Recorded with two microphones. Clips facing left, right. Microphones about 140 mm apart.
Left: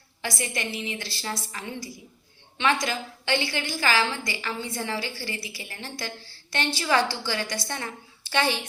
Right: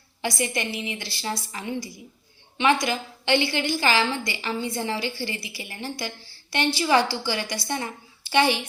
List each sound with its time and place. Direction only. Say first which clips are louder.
0.2 s a woman's voice: right 4 dB; 20° right (ahead or behind)